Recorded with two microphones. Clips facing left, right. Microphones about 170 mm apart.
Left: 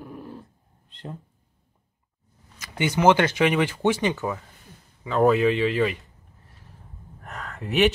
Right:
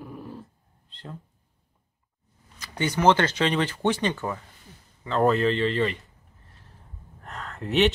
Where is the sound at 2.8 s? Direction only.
10° left (ahead or behind).